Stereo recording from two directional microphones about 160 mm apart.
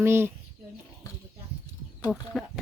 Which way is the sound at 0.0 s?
15° right (ahead or behind).